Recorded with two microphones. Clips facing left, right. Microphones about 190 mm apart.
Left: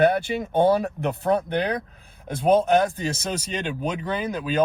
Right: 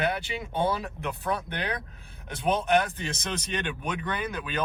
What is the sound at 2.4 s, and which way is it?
Speech, 35° left (ahead or behind).